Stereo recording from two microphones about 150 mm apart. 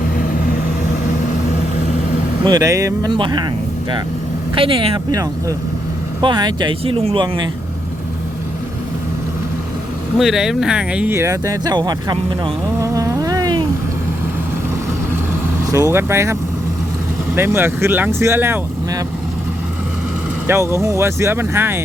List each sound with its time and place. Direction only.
2.4 s speech: 25° right (ahead or behind)
4.5 s speech: 35° right (ahead or behind)
5.1 s speech: 25° right (ahead or behind)
10.2 s speech: centre (ahead or behind); by 12.2 s 30° right (ahead or behind)
12.8 s cat: 20° right (ahead or behind)
15.7 s speech: 20° right (ahead or behind)
20.5 s speech: 20° right (ahead or behind)